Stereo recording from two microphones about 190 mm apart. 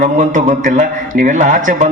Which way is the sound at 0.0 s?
40° right (ahead or behind).